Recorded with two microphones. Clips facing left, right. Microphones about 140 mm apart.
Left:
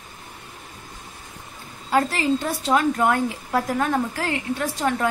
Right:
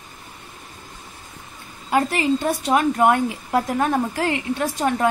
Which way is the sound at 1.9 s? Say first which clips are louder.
Right 1 dB; 20° right (ahead or behind).